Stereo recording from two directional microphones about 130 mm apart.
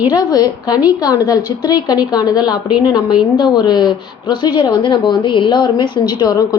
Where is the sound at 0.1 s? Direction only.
30° left (ahead or behind).